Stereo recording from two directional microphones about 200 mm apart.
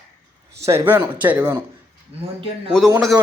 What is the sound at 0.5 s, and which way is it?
A man's voice, 15° right (ahead or behind).